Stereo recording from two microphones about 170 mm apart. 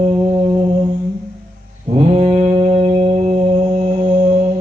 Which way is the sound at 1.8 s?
35° right (ahead or behind).